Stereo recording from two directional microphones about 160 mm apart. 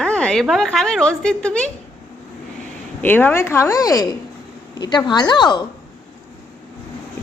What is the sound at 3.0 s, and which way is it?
A woman's voice, 10° left (ahead or behind).